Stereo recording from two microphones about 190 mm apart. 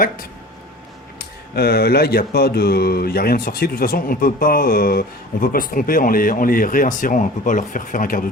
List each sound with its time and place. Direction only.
1.5 s speech: 55° left (ahead or behind)